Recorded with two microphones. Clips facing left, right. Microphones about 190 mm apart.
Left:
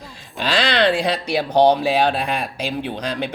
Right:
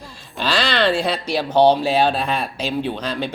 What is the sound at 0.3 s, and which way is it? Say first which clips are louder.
Speech: left 1 dB; 15° left (ahead or behind).